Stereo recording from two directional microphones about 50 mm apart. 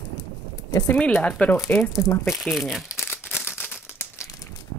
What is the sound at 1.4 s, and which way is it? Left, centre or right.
Speech, left.